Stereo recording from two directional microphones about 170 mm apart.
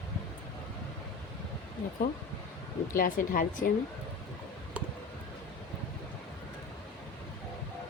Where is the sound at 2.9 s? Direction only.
55° left (ahead or behind).